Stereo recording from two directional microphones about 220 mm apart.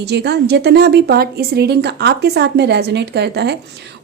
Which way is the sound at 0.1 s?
50° right (ahead or behind).